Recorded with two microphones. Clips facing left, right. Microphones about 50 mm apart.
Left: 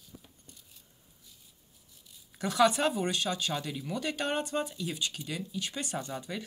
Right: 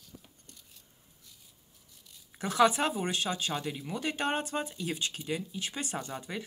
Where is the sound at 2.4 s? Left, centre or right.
Right.